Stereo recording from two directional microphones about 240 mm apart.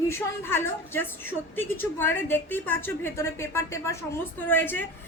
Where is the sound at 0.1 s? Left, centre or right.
Centre.